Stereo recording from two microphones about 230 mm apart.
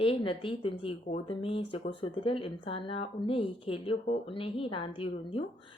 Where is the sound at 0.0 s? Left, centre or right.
Left.